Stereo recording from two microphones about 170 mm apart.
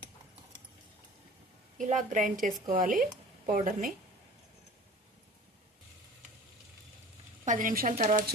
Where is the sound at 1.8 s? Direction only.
45° right (ahead or behind).